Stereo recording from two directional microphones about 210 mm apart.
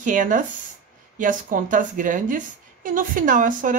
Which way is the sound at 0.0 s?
40° right (ahead or behind).